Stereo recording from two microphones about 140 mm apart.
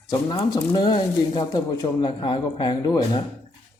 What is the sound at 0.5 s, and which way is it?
Speech, 35° left (ahead or behind).